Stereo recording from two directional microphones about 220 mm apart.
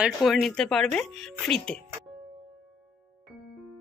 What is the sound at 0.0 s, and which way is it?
Speech, centre (ahead or behind).